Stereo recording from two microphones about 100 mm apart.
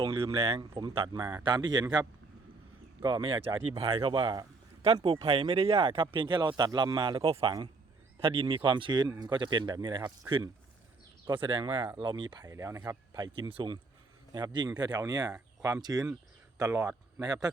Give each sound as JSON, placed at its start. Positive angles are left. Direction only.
{"t": 0.0, "sound": "speech", "side_deg": -35}
{"t": 0.3, "sound": "speech", "side_deg": -70}
{"t": 0.8, "sound": "speech", "side_deg": -50}
{"t": 3.2, "sound": "speech", "side_deg": -60}
{"t": 5.0, "sound": "speech", "side_deg": -70}
{"t": 7.2, "sound": "speech", "side_deg": -70}
{"t": 11.3, "sound": "speech", "side_deg": -55}
{"t": 12.5, "sound": "speech", "side_deg": -35}
{"t": 13.1, "sound": "speech", "side_deg": -45}
{"t": 13.5, "sound": "speech", "side_deg": -55}
{"t": 14.3, "sound": "speech", "side_deg": -45}